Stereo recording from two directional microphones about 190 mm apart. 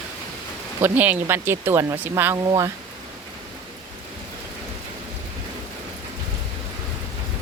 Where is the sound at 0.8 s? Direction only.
10° right (ahead or behind).